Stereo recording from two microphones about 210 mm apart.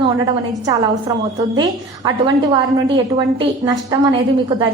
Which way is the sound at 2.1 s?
20° right (ahead or behind).